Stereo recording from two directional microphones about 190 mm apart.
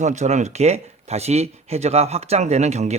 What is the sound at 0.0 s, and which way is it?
Speech, 40° right (ahead or behind).